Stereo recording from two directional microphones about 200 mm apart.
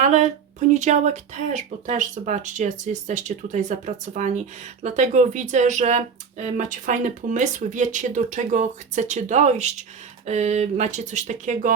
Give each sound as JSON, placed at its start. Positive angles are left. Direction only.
{"t": 0.0, "sound": "speech", "side_deg": -40}